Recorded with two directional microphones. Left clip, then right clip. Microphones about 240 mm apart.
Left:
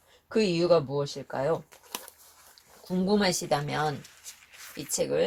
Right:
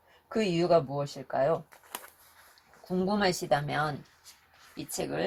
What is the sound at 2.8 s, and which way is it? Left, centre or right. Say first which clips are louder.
Speech: left 2 dB; left.